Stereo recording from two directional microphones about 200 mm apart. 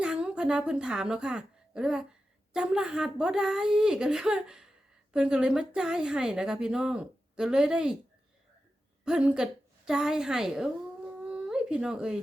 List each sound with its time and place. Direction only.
0.0 s a woman's voice: 5° right (ahead or behind)
9.0 s a woman's voice: 5° right (ahead or behind)
11.3 s a sound: 5° right (ahead or behind)